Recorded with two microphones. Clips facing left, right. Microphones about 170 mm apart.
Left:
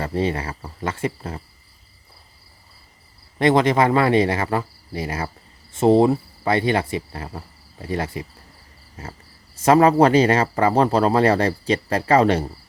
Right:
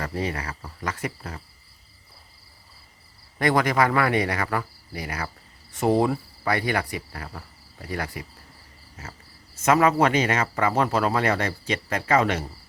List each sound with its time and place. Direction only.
0.0 s cricket: 30° left (ahead or behind)
3.3 s cricket: 25° left (ahead or behind)
9.0 s speech: 30° left (ahead or behind)